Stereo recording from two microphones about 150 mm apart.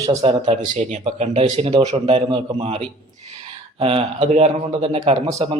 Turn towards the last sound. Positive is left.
turn(degrees=-45)  # may be behind; listen again after turning